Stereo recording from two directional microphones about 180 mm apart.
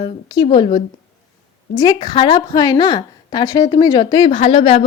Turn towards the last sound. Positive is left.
turn(degrees=30)  # may be behind; listen again after turning